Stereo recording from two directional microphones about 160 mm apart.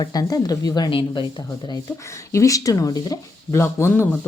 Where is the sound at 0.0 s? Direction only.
25° left (ahead or behind).